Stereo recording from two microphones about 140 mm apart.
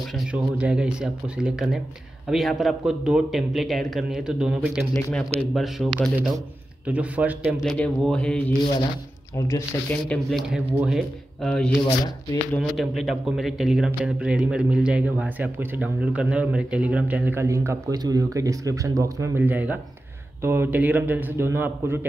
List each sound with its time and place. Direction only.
0.1 s a man's voice: 10° right (ahead or behind)
7.6 s speech: 5° left (ahead or behind)
10.0 s a man's voice: 5° left (ahead or behind)
11.8 s speech: 30° left (ahead or behind)
12.5 s speech: centre (ahead or behind); by 22.0 s 15° right (ahead or behind)